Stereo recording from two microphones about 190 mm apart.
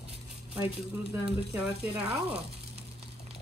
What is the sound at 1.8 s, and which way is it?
Speech, 5° right (ahead or behind).